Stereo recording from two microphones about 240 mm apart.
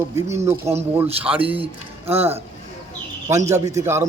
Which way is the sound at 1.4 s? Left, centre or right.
Right.